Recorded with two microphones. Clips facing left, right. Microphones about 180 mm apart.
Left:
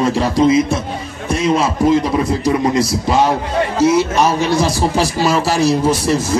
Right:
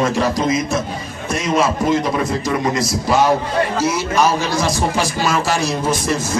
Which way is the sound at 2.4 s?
30° left (ahead or behind).